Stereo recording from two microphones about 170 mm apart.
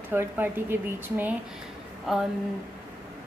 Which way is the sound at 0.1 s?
15° right (ahead or behind).